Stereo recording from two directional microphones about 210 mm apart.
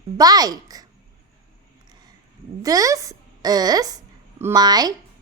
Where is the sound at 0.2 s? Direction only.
15° right (ahead or behind).